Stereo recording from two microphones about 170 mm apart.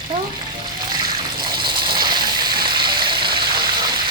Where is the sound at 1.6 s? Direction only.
25° right (ahead or behind).